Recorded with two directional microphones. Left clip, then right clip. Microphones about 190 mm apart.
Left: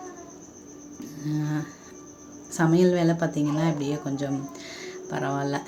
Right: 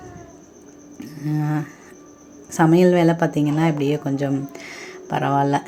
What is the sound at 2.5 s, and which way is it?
Speech, 35° right (ahead or behind).